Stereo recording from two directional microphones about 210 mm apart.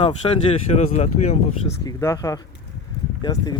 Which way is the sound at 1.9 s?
15° left (ahead or behind).